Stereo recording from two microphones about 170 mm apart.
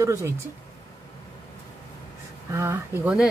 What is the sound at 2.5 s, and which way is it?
Speech, 15° right (ahead or behind).